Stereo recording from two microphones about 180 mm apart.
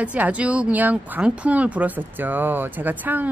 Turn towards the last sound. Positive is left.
turn(degrees=-10)  # may be behind; listen again after turning